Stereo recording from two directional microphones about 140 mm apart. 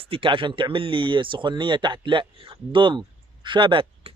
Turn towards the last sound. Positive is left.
turn(degrees=-35)  # may be behind; listen again after turning